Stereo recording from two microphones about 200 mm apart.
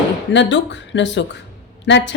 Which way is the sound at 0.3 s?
65° left (ahead or behind).